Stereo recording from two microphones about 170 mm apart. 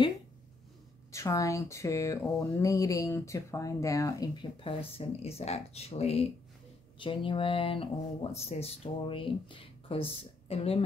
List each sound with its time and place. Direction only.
1.1 s speech: 15° left (ahead or behind); by 10.8 s 35° left (ahead or behind)